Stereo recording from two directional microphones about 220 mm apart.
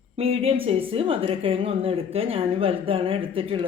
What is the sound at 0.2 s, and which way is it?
A woman's voice, 25° right (ahead or behind).